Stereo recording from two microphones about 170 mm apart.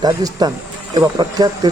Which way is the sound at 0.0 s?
25° right (ahead or behind).